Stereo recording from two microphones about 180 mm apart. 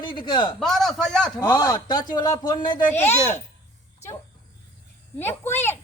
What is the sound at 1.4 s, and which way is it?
A man's voice, 20° left (ahead or behind).